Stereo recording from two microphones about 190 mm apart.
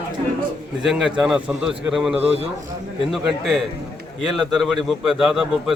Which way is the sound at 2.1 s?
30° right (ahead or behind).